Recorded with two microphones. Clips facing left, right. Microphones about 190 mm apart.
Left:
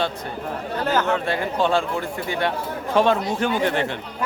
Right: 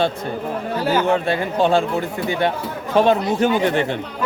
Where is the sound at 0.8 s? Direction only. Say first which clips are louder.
Right 3 dB; 10° right (ahead or behind).